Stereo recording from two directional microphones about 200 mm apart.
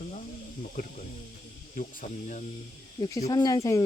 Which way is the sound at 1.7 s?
40° left (ahead or behind).